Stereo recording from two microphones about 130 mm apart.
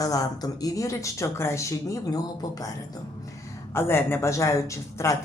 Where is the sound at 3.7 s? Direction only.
20° left (ahead or behind).